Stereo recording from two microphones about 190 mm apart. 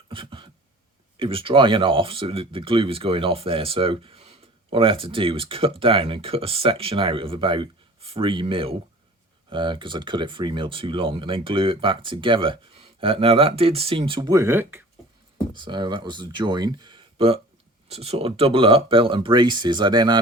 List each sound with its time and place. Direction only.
0.1 s a sound: 25° right (ahead or behind)
1.1 s speech: 25° right (ahead or behind); by 14.8 s 10° right (ahead or behind)
15.5 s speech: 25° right (ahead or behind)